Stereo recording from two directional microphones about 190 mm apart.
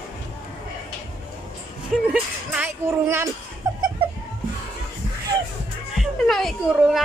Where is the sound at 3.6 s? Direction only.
15° right (ahead or behind).